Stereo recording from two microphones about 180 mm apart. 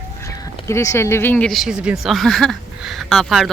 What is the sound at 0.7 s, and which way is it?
Speech, 15° left (ahead or behind).